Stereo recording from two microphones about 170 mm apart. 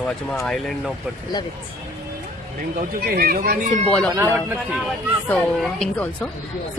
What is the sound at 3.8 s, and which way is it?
Speech, 5° left (ahead or behind).